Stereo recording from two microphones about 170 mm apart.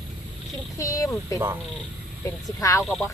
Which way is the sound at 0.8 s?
15° left (ahead or behind).